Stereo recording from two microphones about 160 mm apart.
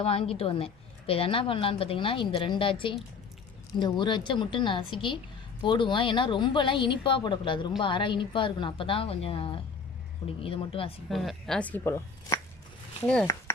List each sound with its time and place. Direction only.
0.0 s a woman's voice: 35° left (ahead or behind)
11.1 s speech: centre (ahead or behind)
11.8 s speech: 20° left (ahead or behind)